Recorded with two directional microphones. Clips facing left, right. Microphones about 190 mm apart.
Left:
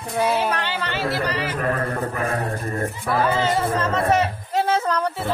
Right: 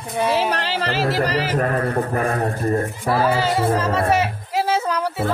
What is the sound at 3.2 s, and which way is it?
Speech, 5° right (ahead or behind).